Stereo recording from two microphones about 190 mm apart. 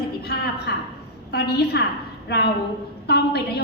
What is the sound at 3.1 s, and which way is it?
Speech, 60° left (ahead or behind).